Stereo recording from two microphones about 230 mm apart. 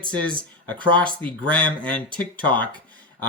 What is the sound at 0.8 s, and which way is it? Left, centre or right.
Speech, centre.